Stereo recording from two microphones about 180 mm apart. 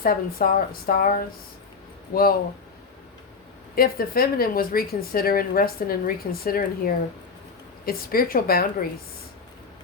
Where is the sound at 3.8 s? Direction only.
55° left (ahead or behind).